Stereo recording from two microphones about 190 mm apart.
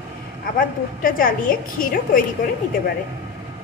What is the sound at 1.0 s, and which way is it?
A woman's voice, 45° left (ahead or behind).